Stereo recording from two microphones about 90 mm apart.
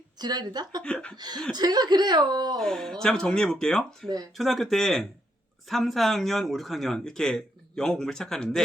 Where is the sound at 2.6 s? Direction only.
5° left (ahead or behind).